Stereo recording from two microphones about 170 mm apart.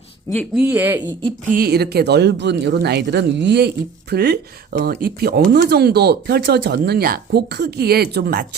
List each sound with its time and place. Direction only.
0.5 s speech: 10° right (ahead or behind)
1.5 s speech: 60° right (ahead or behind); by 3.7 s 85° right
4.1 s speech: 70° right (ahead or behind)
4.9 s speech: 60° right (ahead or behind)